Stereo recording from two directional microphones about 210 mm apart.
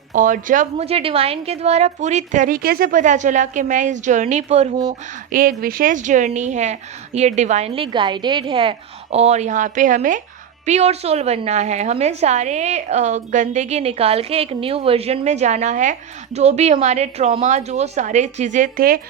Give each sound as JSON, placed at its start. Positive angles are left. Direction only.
{"t": 0.1, "sound": "a woman's voice", "side_deg": -40}
{"t": 4.9, "sound": "a woman's voice", "side_deg": -40}